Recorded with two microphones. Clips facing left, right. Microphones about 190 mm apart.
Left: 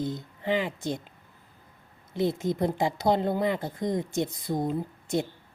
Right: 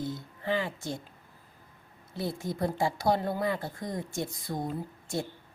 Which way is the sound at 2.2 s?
20° left (ahead or behind).